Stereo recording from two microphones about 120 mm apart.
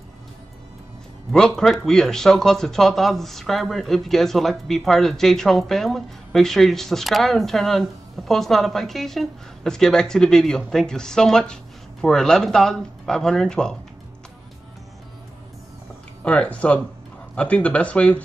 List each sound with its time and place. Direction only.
1.3 s speech: centre (ahead or behind)
16.3 s speech: 10° left (ahead or behind)